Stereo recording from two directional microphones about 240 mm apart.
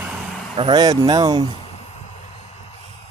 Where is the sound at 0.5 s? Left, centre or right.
Centre.